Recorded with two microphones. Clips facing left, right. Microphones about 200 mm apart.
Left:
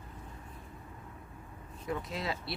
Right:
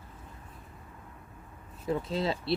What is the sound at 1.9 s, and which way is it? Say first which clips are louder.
Speech: right 6 dB; 30° right (ahead or behind).